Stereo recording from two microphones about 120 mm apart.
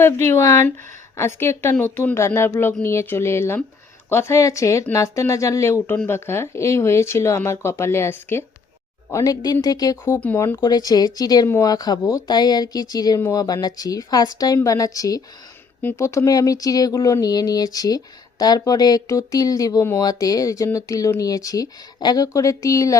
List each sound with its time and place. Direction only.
0.0 s speech: 20° left (ahead or behind)
9.1 s speech: 30° left (ahead or behind)
10.2 s speech: 20° left (ahead or behind)